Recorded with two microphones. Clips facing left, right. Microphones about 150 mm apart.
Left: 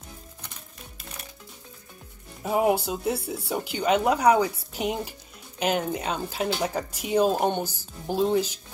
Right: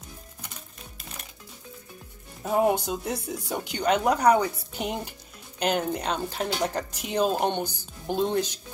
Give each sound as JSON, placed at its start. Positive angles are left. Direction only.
{"t": 2.4, "sound": "speech", "side_deg": 5}